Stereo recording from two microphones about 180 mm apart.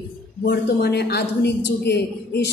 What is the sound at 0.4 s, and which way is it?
A woman's voice, 60° left (ahead or behind).